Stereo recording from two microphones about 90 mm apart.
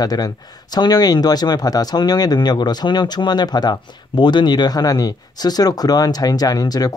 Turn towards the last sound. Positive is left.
turn(degrees=45)  # may be behind; listen again after turning